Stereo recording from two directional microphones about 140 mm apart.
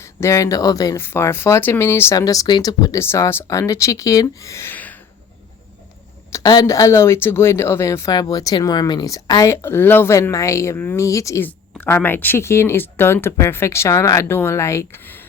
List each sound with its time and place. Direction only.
0.0 s speech: 20° left (ahead or behind)
6.3 s speech: 25° left (ahead or behind)